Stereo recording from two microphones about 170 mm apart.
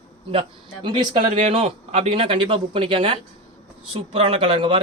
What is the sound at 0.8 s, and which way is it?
Speech, 30° right (ahead or behind).